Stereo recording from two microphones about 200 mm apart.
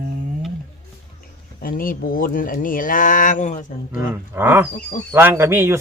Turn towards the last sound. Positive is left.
turn(degrees=-10)  # may be behind; listen again after turning